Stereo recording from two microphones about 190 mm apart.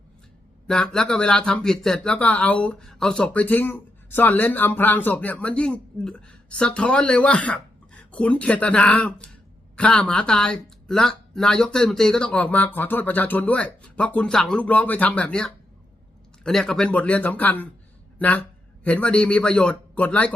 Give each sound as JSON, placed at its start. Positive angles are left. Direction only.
{"t": 0.7, "sound": "speech", "side_deg": 5}